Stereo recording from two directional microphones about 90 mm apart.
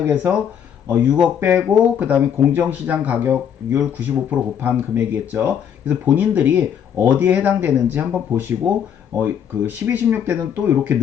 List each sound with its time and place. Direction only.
0.0 s speech: 20° right (ahead or behind)